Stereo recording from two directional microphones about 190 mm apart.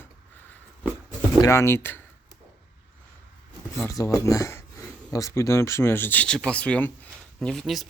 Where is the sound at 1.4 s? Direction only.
15° left (ahead or behind).